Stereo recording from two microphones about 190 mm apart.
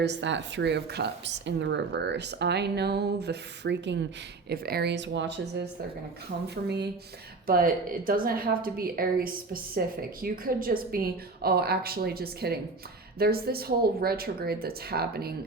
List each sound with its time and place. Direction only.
0.0 s speech: 70° right (ahead or behind)
4.4 s speech: 55° right (ahead or behind)
7.4 s a woman's voice: 50° right (ahead or behind)